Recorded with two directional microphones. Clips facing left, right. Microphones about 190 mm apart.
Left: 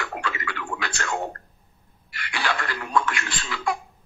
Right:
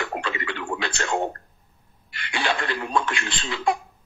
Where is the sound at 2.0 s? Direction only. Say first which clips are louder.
Right 2 dB; 25° right (ahead or behind).